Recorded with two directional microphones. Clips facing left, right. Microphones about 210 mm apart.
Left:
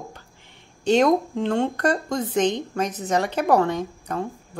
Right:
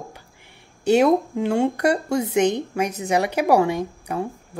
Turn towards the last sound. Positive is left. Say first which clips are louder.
# right 2 dB
turn(degrees=-10)  # may be behind; listen again after turning